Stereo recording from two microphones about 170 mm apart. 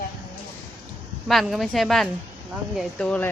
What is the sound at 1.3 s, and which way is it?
A woman's voice, centre (ahead or behind).